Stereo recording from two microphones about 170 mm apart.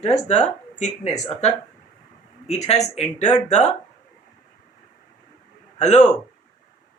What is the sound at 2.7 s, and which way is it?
Speech, 40° left (ahead or behind).